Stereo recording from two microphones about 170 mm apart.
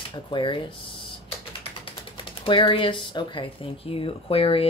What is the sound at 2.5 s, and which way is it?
Speech, 30° left (ahead or behind).